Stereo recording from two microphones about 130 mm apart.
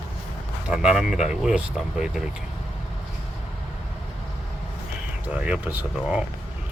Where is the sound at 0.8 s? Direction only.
5° right (ahead or behind).